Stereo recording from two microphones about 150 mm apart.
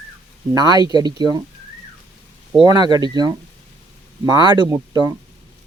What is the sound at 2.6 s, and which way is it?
Speech, 30° right (ahead or behind).